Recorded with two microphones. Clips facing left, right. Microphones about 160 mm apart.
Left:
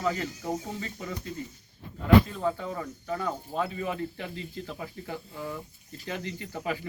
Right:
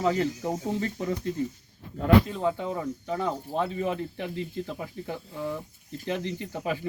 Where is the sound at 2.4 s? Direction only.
20° right (ahead or behind).